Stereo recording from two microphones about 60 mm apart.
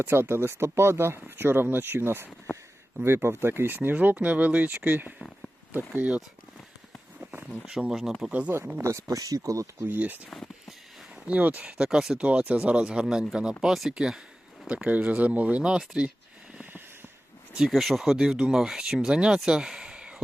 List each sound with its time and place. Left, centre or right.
0.0 s speech: right
7.8 s speech: centre
8.2 s speech: right
8.8 s speech: right
9.8 s speech: right
11.3 s speech: right
11.8 s speech: centre
12.2 s speech: right
14.7 s speech: right
17.7 s speech: centre
19.4 s a sound: centre